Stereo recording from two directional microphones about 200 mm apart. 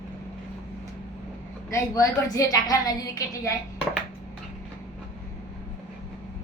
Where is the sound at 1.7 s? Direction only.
15° left (ahead or behind).